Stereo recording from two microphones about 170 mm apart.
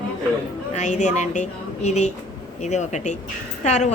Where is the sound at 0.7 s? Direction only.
45° left (ahead or behind).